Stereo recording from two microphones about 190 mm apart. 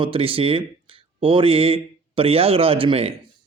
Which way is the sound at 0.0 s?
30° right (ahead or behind).